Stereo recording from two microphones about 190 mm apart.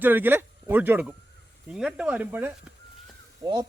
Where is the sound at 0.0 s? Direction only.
10° right (ahead or behind).